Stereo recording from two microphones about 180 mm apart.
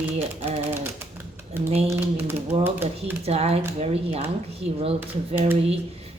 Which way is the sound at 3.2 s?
35° right (ahead or behind).